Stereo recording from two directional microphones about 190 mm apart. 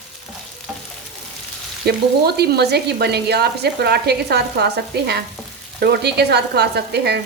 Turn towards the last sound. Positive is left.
turn(degrees=-60)  # may be behind; listen again after turning